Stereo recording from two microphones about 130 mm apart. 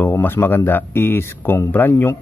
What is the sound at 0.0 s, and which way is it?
Speech, 15° left (ahead or behind).